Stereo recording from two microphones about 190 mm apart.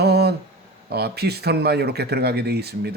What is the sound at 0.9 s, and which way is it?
Speech, 55° right (ahead or behind).